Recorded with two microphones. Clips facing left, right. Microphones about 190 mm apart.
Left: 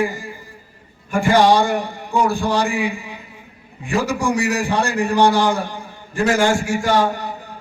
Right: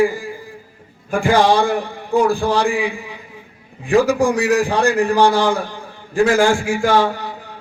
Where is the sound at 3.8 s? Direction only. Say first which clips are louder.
Right 6 dB; 90° right.